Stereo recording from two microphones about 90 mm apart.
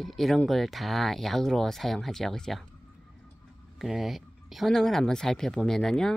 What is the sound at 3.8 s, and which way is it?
Speech, 5° right (ahead or behind).